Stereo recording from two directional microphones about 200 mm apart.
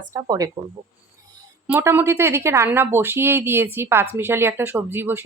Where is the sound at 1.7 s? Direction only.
10° right (ahead or behind).